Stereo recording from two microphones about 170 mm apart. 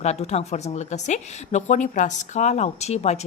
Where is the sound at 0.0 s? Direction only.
40° left (ahead or behind).